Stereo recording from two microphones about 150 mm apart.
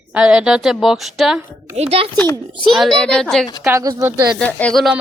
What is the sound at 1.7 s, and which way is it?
Speech, 45° right (ahead or behind).